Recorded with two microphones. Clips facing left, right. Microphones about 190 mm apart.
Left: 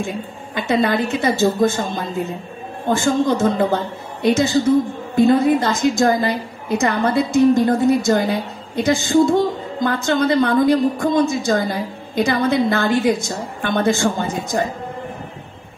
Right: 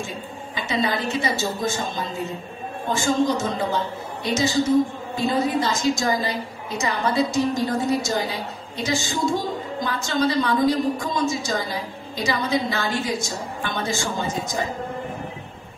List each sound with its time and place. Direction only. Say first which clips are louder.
0.6 s a woman's voice: left 7 dB; 55° left (ahead or behind)